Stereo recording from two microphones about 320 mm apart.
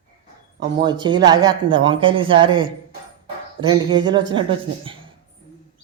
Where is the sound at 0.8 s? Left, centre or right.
Centre.